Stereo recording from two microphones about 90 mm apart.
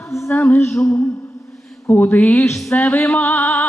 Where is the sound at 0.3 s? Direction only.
20° left (ahead or behind).